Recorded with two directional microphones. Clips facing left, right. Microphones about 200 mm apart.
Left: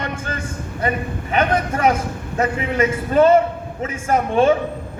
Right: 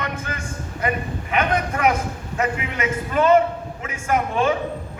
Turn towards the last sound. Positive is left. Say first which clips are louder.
# left 4 dB
turn(degrees=30)  # may be behind; listen again after turning